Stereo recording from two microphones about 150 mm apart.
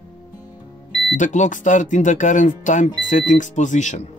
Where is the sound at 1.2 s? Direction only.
55° left (ahead or behind).